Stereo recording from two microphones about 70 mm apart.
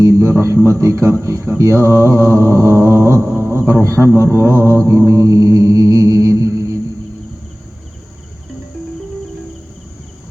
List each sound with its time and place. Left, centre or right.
0.0 s mantra: right